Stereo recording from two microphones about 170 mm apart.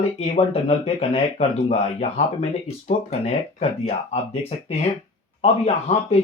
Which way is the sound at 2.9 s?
40° left (ahead or behind).